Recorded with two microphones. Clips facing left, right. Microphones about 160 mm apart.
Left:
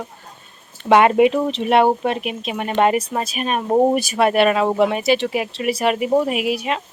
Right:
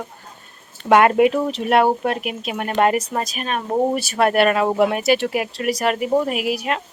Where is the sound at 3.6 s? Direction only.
20° left (ahead or behind).